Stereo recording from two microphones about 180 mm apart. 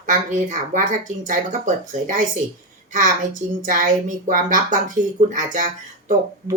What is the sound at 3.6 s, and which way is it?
Speech, 50° right (ahead or behind).